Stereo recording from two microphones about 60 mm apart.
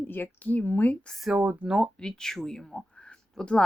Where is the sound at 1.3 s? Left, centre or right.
Right.